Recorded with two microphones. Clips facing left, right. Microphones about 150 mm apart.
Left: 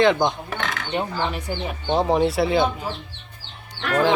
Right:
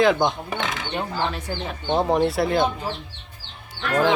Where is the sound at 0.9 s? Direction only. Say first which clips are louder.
Left 2 dB; 15° left (ahead or behind).